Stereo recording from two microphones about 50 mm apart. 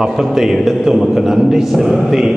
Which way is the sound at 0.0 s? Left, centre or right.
Centre.